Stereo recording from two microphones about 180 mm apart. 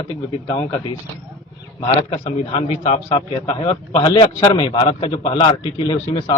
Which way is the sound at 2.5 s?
30° left (ahead or behind).